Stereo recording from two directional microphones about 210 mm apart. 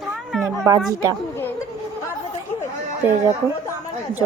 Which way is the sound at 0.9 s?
15° right (ahead or behind).